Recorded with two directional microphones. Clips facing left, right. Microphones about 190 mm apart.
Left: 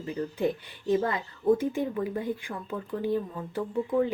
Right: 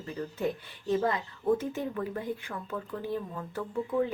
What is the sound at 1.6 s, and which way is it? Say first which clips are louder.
Speech: left 4 dB; 10° left (ahead or behind).